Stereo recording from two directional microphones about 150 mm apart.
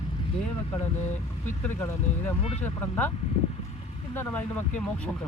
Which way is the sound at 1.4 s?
15° left (ahead or behind).